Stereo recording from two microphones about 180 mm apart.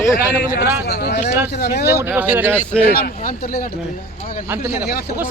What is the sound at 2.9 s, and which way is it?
Speech, 55° left (ahead or behind).